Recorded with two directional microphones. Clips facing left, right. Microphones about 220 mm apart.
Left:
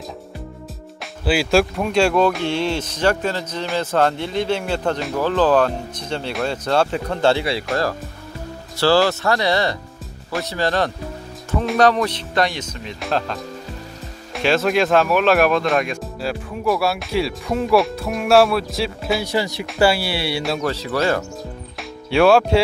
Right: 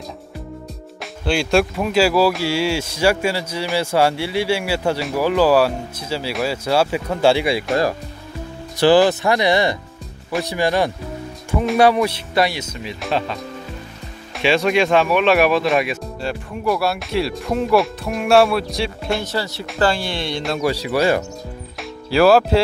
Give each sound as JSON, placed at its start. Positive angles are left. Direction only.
{"t": 1.2, "sound": "speech", "side_deg": 5}
{"t": 8.7, "sound": "speech", "side_deg": -15}
{"t": 19.2, "sound": "speech", "side_deg": 15}
{"t": 20.6, "sound": "speech", "side_deg": -10}
{"t": 22.1, "sound": "speech", "side_deg": 0}